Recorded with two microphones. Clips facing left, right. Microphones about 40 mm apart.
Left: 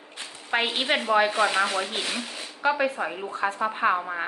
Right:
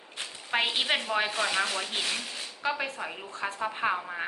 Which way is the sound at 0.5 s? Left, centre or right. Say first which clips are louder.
Left 3 dB; centre.